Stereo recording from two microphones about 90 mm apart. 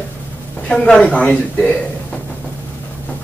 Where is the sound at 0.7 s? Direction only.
5° left (ahead or behind).